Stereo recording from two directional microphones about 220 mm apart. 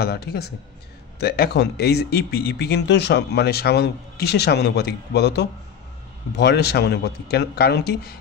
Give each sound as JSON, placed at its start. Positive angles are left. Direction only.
{"t": 0.0, "sound": "speech", "side_deg": 45}